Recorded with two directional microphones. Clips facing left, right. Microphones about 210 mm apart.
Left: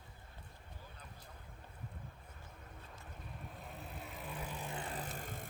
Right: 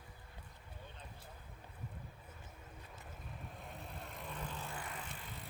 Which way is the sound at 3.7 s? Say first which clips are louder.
Left 1 dB; 5° left (ahead or behind).